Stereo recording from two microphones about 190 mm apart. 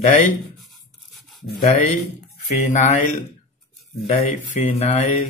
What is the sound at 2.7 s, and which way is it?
Speech, 40° left (ahead or behind).